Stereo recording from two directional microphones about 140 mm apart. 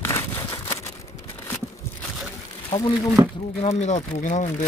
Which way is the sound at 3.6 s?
50° left (ahead or behind).